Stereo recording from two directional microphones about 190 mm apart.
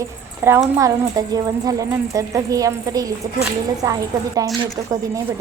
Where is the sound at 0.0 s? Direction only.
15° right (ahead or behind).